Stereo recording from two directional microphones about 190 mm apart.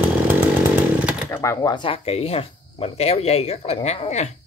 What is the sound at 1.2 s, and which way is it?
Speech, 15° left (ahead or behind).